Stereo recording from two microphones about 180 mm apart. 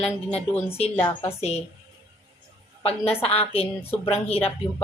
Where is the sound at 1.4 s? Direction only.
35° left (ahead or behind).